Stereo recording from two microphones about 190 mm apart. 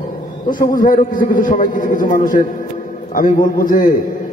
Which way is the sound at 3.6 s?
45° left (ahead or behind).